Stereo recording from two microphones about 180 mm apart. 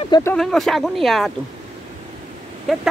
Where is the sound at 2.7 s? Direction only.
Centre (ahead or behind).